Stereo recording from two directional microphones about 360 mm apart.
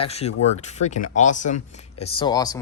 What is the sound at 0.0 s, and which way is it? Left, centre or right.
Speech, centre.